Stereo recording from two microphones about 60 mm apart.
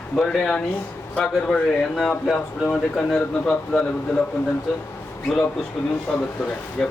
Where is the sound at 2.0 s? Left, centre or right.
Centre.